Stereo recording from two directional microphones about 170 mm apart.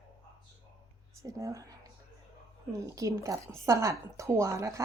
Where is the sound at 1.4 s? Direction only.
20° right (ahead or behind).